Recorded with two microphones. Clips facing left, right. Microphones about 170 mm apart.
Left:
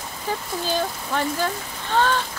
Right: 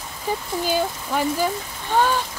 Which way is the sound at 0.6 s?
10° right (ahead or behind).